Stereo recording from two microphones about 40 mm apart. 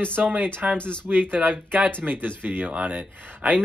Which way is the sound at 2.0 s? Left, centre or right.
Right.